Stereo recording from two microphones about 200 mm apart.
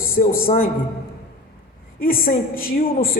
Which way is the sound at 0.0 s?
45° left (ahead or behind).